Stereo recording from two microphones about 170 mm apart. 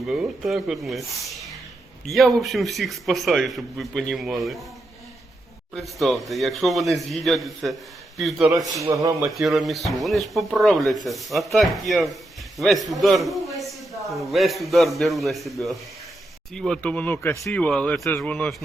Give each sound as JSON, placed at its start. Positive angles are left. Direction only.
{"t": 0.1, "sound": "a man's voice", "side_deg": -5}
{"t": 5.7, "sound": "a man's voice", "side_deg": 0}
{"t": 8.8, "sound": "speech", "side_deg": -20}
{"t": 9.3, "sound": "a man's voice", "side_deg": 0}